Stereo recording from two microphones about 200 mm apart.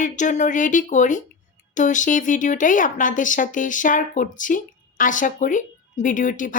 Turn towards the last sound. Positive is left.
turn(degrees=40)  # may be behind; listen again after turning